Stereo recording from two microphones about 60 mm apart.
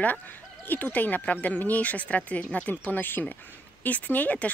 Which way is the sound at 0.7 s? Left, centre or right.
Left.